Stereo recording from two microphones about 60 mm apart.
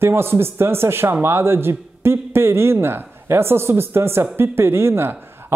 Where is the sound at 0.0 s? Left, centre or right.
Right.